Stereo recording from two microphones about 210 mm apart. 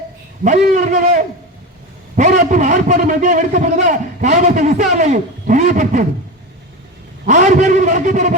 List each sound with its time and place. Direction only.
0.4 s a man's voice: 35° right (ahead or behind)
7.3 s a man's voice: 35° right (ahead or behind)